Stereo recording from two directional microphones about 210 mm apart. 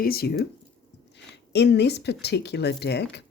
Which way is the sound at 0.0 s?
45° left (ahead or behind).